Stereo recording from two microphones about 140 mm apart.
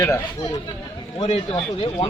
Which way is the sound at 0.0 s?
25° left (ahead or behind).